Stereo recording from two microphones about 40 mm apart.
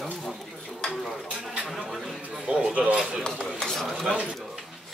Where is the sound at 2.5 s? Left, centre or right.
Right.